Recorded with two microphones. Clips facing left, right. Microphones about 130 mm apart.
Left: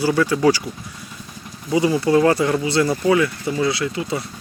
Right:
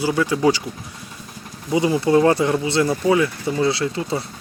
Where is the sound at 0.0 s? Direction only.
20° right (ahead or behind).